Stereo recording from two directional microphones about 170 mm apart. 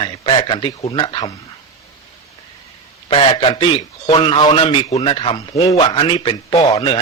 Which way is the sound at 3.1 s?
30° left (ahead or behind).